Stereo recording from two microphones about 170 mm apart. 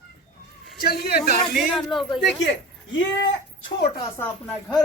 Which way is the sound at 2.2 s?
90° left.